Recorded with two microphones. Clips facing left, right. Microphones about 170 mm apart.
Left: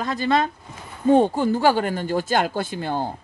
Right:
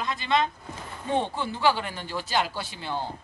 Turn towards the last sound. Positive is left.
turn(degrees=50)  # may be behind; listen again after turning